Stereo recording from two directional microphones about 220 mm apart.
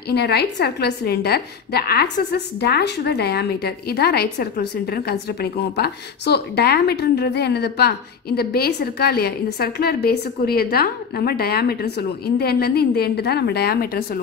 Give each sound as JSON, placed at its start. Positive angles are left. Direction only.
{"t": 0.1, "sound": "a woman's voice", "side_deg": 50}